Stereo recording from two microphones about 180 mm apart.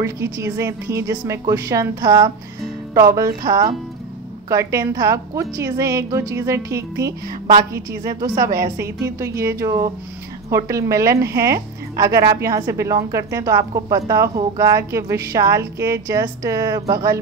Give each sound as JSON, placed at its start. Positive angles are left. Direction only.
{"t": 0.0, "sound": "a woman's voice", "side_deg": -15}